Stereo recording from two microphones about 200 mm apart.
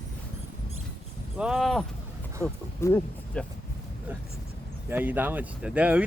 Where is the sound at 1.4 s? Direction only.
Centre (ahead or behind).